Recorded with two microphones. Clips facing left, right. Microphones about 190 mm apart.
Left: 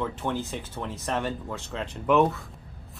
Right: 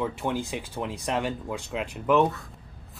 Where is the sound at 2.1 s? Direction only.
Centre (ahead or behind).